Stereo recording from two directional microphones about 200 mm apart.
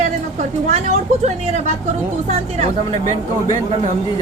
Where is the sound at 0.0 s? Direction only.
35° right (ahead or behind).